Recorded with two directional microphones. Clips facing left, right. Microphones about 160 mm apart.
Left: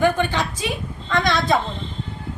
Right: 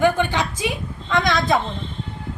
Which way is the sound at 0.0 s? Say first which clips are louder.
Right 1 dB; 10° right (ahead or behind).